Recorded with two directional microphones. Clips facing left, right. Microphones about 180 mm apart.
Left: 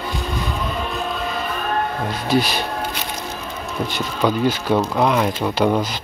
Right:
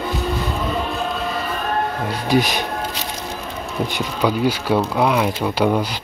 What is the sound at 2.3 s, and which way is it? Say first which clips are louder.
Speech: right 1 dB; 15° right (ahead or behind).